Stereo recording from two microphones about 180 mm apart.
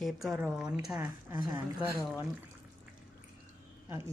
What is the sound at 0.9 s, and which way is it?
Speech, 20° right (ahead or behind).